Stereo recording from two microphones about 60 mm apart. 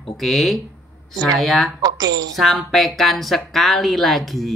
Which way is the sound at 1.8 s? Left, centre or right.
Right.